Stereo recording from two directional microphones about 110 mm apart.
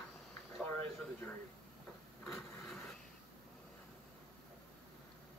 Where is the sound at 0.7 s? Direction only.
15° left (ahead or behind).